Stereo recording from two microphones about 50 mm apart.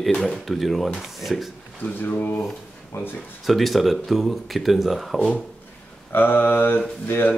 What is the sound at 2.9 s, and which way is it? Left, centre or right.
Mantra, left.